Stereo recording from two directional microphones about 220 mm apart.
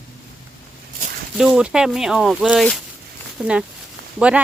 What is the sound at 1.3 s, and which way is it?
Speech, 5° right (ahead or behind).